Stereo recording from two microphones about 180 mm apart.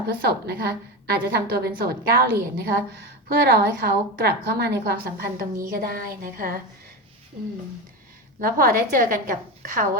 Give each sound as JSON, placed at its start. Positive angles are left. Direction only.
{"t": 0.1, "sound": "a woman's voice", "side_deg": -60}
{"t": 8.4, "sound": "a woman's voice", "side_deg": -50}